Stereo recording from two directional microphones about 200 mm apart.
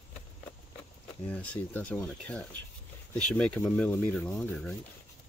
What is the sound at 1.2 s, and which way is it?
Speech, 5° left (ahead or behind).